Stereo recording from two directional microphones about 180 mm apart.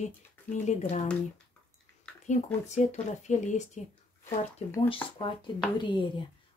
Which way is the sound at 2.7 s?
40° left (ahead or behind).